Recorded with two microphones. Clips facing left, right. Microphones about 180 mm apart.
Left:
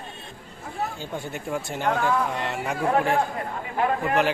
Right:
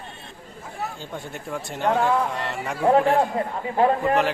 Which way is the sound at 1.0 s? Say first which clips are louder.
Left 2 dB; centre (ahead or behind).